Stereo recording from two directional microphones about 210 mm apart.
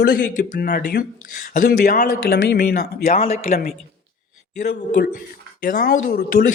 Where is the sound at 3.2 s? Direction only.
30° left (ahead or behind).